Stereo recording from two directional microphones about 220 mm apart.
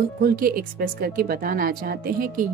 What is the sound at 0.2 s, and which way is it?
A woman's voice, 40° right (ahead or behind).